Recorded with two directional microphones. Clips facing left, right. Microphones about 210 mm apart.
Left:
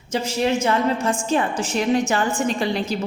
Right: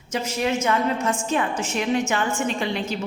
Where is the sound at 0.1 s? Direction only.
30° left (ahead or behind).